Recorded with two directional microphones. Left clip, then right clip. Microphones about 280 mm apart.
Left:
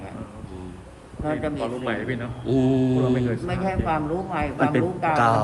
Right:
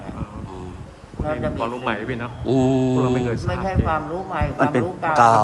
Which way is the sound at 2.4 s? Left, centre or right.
Centre.